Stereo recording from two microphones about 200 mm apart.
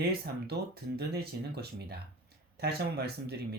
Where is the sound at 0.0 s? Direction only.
50° right (ahead or behind).